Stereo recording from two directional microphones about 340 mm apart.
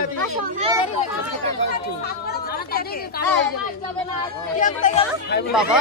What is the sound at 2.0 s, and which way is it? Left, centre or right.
Speech, left.